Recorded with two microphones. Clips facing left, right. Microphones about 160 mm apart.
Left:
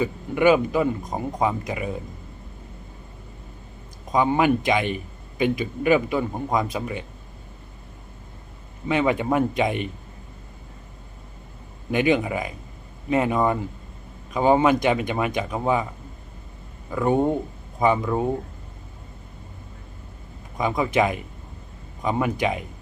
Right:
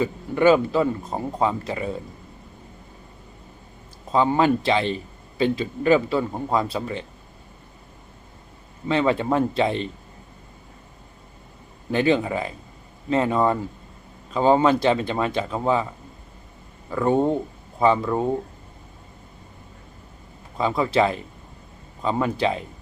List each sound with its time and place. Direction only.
0.0 s a man's voice: 15° left (ahead or behind)
4.1 s a man's voice: 15° left (ahead or behind)
8.9 s a man's voice: 15° left (ahead or behind)
11.9 s a man's voice: 15° left (ahead or behind)
16.9 s a man's voice: 15° left (ahead or behind)
20.6 s a man's voice: 15° left (ahead or behind)